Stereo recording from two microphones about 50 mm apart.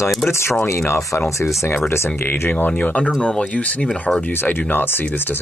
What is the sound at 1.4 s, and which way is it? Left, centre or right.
Speech, left.